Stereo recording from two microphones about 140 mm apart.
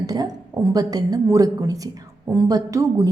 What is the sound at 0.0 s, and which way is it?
A woman's voice, 25° right (ahead or behind).